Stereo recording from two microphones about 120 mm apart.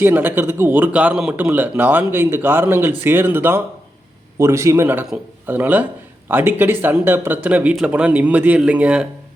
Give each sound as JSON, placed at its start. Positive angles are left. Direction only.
{"t": 0.0, "sound": "a man's voice", "side_deg": -15}